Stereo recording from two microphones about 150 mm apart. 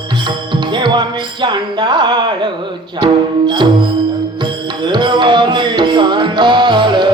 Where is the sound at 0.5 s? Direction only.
30° right (ahead or behind).